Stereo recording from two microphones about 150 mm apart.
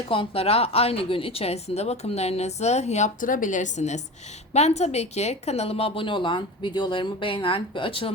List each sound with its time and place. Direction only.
0.1 s a woman's voice: 40° left (ahead or behind)